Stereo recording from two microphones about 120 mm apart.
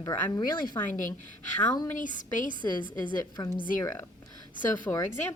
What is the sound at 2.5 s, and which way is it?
A woman's voice, 40° left (ahead or behind).